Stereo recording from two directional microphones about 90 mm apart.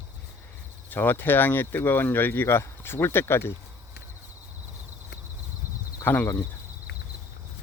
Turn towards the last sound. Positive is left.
turn(degrees=20)  # may be behind; listen again after turning